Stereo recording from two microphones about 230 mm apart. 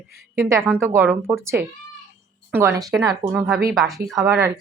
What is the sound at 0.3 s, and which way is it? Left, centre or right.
A woman's voice, centre.